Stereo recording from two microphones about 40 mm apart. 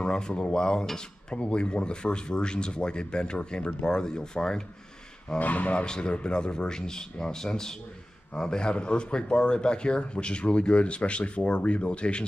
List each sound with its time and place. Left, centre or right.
0.0 s speech: left
5.4 s speech: left
5.9 s speech: left